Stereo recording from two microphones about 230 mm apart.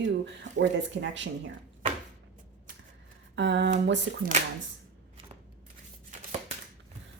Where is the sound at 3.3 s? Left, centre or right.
Right.